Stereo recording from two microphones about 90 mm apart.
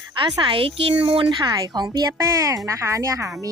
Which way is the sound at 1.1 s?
60° right (ahead or behind).